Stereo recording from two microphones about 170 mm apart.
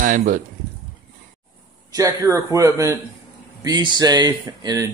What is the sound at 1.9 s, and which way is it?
Speech, 20° right (ahead or behind).